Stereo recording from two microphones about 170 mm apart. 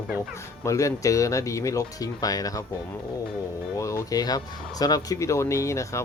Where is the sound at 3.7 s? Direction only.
20° left (ahead or behind).